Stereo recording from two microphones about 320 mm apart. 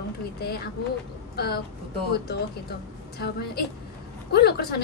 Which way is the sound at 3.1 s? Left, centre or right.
Left.